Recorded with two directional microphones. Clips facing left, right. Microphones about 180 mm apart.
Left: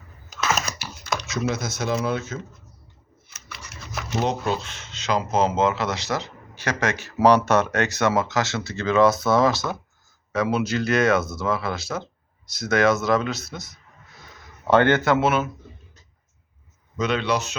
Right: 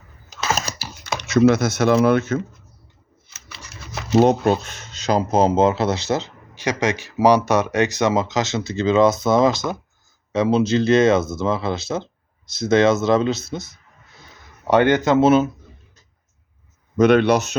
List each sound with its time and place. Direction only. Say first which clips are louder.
0.3 s computer keyboard: right 1 dB; 35° right (ahead or behind)
1.3 s speech: right 14 dB; 65° right (ahead or behind)
3.2 s a sound: even; 30° right (ahead or behind)
4.2 s speech: right 9 dB; 45° right (ahead or behind); by 15.4 s 25° right (ahead or behind)
17.0 s speech: right 9 dB; 50° right (ahead or behind)